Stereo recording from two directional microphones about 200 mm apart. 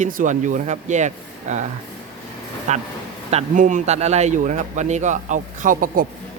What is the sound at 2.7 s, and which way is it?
A man's voice, 35° right (ahead or behind).